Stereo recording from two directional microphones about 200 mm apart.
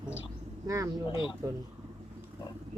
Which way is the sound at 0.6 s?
15° right (ahead or behind).